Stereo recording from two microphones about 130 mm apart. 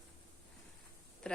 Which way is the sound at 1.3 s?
5° left (ahead or behind).